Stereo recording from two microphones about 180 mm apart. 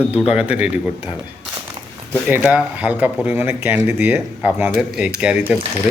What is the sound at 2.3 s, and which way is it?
Speech, 5° right (ahead or behind).